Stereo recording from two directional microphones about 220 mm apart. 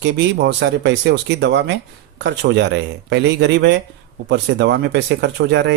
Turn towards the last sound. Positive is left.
turn(degrees=-50)  # may be behind; listen again after turning